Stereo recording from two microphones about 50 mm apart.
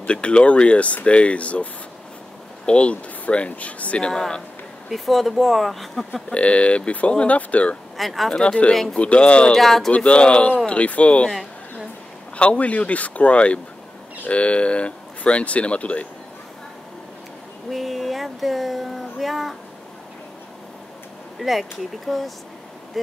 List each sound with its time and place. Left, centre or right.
0.0 s speech: left
4.1 s speech: centre
4.8 s speech: centre
6.3 s speech: left
8.0 s speech: centre
8.3 s speech: centre
9.6 s speech: centre
9.9 s speech: left
12.4 s speech: left
17.6 s speech: centre
21.4 s speech: centre